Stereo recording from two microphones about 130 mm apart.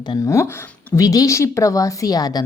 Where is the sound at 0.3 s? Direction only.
20° left (ahead or behind).